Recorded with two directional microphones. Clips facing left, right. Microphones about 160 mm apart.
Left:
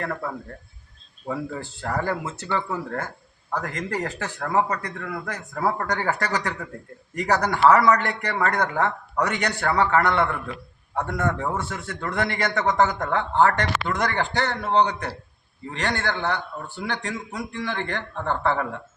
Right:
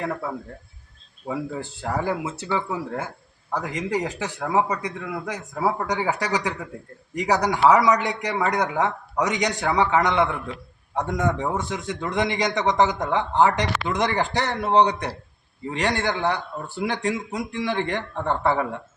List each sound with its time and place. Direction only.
0.0 s a man's voice: 10° right (ahead or behind)
16.8 s a man's voice: 15° right (ahead or behind)
17.7 s a man's voice: 5° right (ahead or behind)